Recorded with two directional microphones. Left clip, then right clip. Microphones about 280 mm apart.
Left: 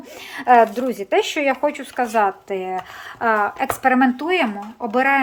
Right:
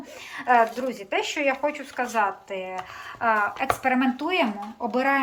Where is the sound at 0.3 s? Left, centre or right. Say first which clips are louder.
Left 6 dB; left.